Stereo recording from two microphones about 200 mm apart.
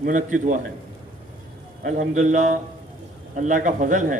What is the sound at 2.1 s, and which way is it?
A man's voice, 35° right (ahead or behind).